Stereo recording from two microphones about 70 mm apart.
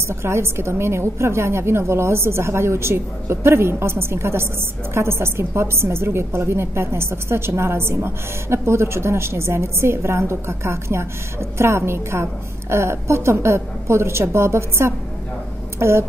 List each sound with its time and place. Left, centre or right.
0.1 s a woman's voice: right